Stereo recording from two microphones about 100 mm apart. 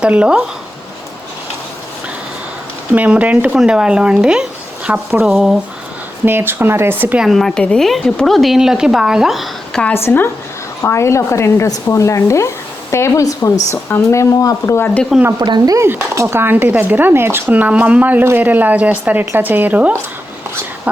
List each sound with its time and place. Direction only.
0.0 s speech: 10° right (ahead or behind)
2.9 s speech: 15° right (ahead or behind)
6.2 s speech: 20° right (ahead or behind)
7.2 s speech: centre (ahead or behind)
10.8 s speech: 30° left (ahead or behind)
11.9 s stir: 30° left (ahead or behind)
13.9 s speech: 30° left (ahead or behind)
15.4 s speech: 45° right (ahead or behind)
15.8 s speech: 25° right (ahead or behind)